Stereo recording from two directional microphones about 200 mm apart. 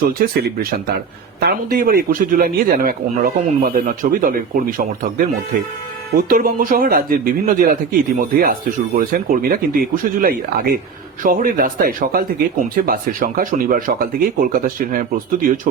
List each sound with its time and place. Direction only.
0.1 s a man's voice: 50° right (ahead or behind)